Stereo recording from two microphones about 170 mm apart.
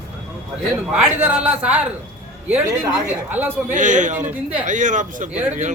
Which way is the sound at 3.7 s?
50° right (ahead or behind).